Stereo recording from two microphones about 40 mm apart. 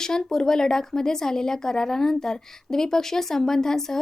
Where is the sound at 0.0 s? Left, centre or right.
Centre.